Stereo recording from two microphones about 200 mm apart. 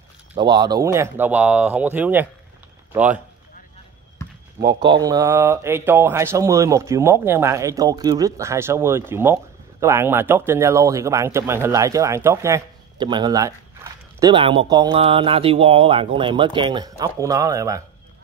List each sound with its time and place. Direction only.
0.3 s a man's voice: 20° right (ahead or behind)
4.6 s speech: 20° right (ahead or behind)